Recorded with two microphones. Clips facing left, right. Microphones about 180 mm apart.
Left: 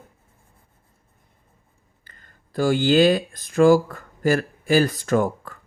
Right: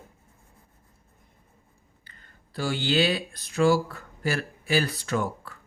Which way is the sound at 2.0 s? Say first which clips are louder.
Left 2 dB; 45° left (ahead or behind).